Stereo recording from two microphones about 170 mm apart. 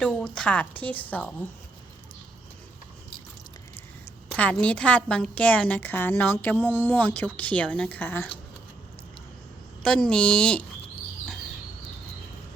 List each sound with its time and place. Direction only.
0.0 s a woman's voice: 5° left (ahead or behind)
4.3 s a woman's voice: 5° left (ahead or behind)
9.8 s a woman's voice: 5° left (ahead or behind)